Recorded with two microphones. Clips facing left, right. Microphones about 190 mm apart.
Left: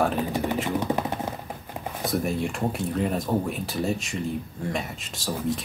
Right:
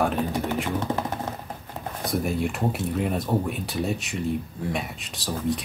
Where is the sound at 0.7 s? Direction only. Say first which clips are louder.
Left 1 dB; 15° left (ahead or behind).